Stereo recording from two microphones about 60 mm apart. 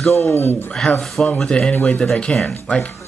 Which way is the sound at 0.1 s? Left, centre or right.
Left.